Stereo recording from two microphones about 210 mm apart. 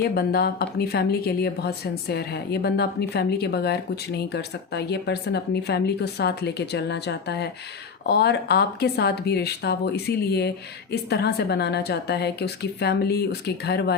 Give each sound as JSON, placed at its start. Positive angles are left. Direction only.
{"t": 0.0, "sound": "speech", "side_deg": 45}